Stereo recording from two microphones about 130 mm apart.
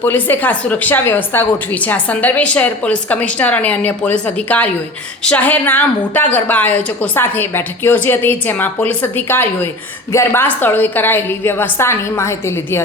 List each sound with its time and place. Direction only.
0.0 s a woman's voice: 15° left (ahead or behind)